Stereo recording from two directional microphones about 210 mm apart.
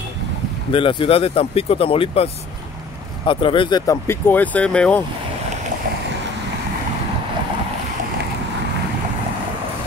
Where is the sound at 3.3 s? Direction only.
25° left (ahead or behind); by 5.0 s 5° left (ahead or behind).